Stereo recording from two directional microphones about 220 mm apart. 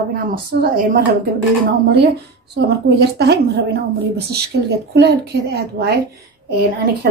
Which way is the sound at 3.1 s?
50° right (ahead or behind).